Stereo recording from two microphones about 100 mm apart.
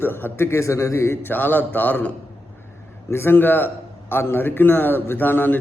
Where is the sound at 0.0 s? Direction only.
20° left (ahead or behind).